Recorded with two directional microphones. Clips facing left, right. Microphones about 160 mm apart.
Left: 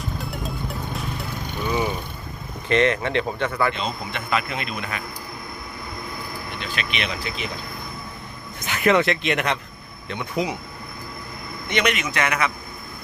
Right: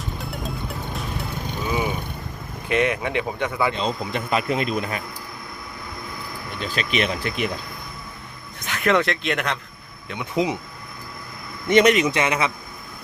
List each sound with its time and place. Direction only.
0.2 s music: centre (ahead or behind)
1.6 s vehicle: 10° right (ahead or behind)
2.6 s speech: 5° right (ahead or behind)
3.8 s speech: 35° right (ahead or behind)
6.6 s speech: 40° right (ahead or behind); by 7.5 s 55° right (ahead or behind)
8.6 s speech: 5° left (ahead or behind)
10.3 s a man's voice: 20° right (ahead or behind)
11.7 s speech: 40° right (ahead or behind)
12.1 s a man's voice: 25° right (ahead or behind)